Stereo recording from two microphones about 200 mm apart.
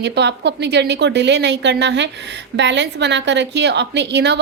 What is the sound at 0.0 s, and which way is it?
A woman's voice, 60° right (ahead or behind).